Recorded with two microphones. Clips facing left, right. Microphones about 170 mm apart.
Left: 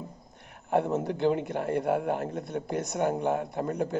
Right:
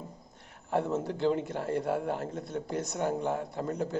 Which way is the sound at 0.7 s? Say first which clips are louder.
Left 3 dB; 60° left (ahead or behind).